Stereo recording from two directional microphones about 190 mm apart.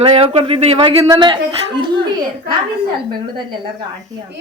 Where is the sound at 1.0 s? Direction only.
20° right (ahead or behind).